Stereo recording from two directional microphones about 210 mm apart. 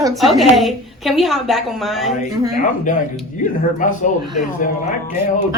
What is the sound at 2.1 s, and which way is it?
A man's voice, 35° left (ahead or behind).